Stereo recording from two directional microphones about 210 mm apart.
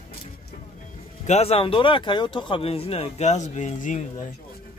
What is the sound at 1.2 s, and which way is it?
Speech, 30° left (ahead or behind).